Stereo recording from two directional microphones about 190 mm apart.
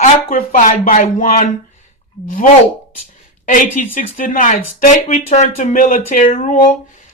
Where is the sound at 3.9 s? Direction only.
45° left (ahead or behind).